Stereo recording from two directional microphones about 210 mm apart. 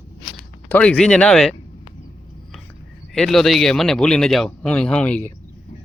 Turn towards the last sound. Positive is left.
turn(degrees=5)  # may be behind; listen again after turning